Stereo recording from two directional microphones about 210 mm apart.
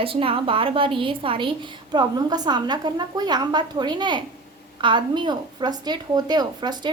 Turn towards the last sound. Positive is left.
turn(degrees=-20)  # may be behind; listen again after turning